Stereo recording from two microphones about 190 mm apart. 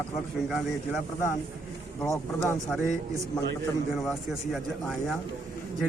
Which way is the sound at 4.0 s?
Centre (ahead or behind).